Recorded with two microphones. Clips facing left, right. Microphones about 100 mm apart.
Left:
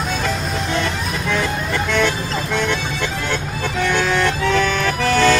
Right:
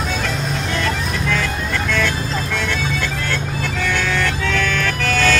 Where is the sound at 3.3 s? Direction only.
20° left (ahead or behind).